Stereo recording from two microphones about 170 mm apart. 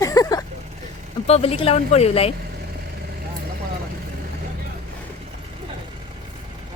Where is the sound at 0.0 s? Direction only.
20° left (ahead or behind).